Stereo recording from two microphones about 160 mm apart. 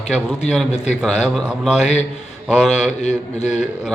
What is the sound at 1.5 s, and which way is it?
A man's voice, 5° right (ahead or behind).